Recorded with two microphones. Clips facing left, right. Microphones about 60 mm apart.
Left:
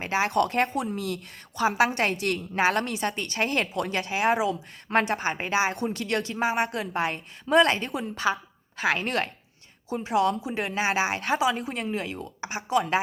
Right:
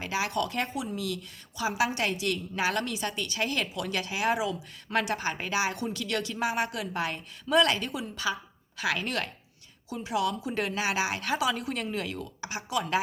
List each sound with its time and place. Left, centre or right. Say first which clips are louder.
0.0 s a woman's voice: left 5 dB; left
0.3 s a woman's voice: left 6 dB; left
5.8 s a woman's voice: left 4 dB; left